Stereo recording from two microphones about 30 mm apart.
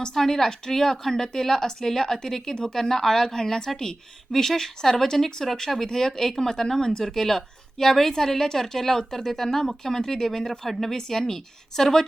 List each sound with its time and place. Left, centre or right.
0.1 s a woman's voice: centre